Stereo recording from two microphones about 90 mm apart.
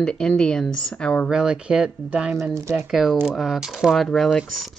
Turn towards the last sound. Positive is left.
turn(degrees=5)  # may be behind; listen again after turning